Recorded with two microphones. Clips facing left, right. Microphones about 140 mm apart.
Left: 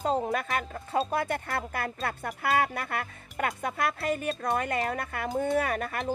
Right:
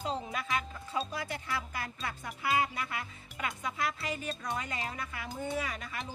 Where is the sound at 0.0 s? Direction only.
50° left (ahead or behind).